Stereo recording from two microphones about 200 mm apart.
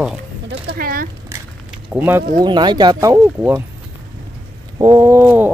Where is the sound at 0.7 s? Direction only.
45° right (ahead or behind).